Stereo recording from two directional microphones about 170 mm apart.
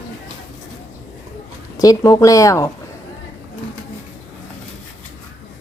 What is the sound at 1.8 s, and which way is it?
Speech, 20° left (ahead or behind).